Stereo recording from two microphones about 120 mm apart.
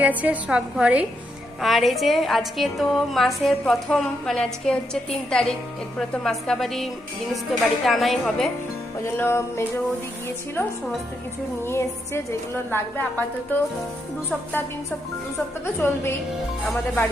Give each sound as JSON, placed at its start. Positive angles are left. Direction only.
{"t": 0.0, "sound": "a woman's voice", "side_deg": -15}
{"t": 1.6, "sound": "a woman's voice", "side_deg": 0}
{"t": 9.1, "sound": "music", "side_deg": 20}
{"t": 11.6, "sound": "music", "side_deg": 20}
{"t": 12.7, "sound": "a woman's voice", "side_deg": 15}
{"t": 15.6, "sound": "music", "side_deg": 20}